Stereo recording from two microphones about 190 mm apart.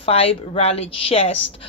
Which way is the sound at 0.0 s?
30° left (ahead or behind).